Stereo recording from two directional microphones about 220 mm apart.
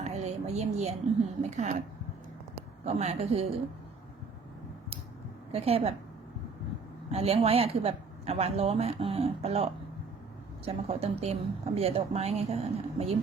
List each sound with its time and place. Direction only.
0.0 s a woman's voice: 30° right (ahead or behind)
2.8 s a woman's voice: 30° right (ahead or behind)
5.5 s a woman's voice: 25° right (ahead or behind)
7.1 s a woman's voice: 25° right (ahead or behind)
10.7 s a woman's voice: 25° right (ahead or behind)